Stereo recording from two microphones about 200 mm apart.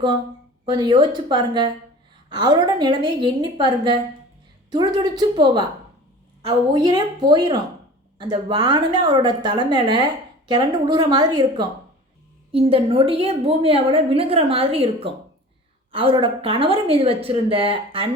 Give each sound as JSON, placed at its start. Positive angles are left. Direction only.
{"t": 0.6, "sound": "a woman's voice", "side_deg": -20}